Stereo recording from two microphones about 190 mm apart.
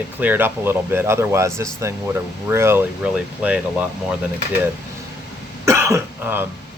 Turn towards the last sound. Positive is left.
turn(degrees=-10)  # may be behind; listen again after turning